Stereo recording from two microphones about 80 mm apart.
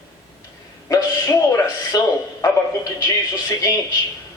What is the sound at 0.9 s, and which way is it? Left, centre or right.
A man's voice, left.